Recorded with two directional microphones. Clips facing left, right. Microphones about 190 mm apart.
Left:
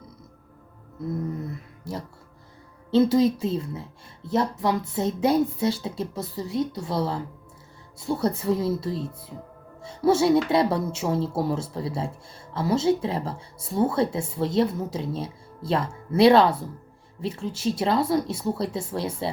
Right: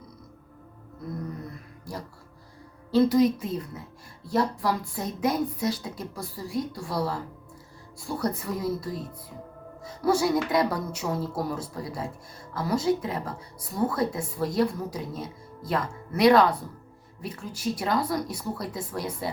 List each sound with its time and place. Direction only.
1.5 s music: 25° left (ahead or behind)
2.9 s a woman's voice: 25° left (ahead or behind)